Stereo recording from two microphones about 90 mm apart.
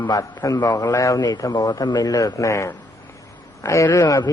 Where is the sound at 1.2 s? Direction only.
50° left (ahead or behind).